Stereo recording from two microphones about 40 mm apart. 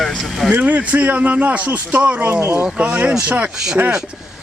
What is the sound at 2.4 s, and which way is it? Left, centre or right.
Speech, right.